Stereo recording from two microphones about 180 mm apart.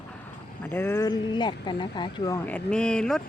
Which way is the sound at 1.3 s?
25° left (ahead or behind).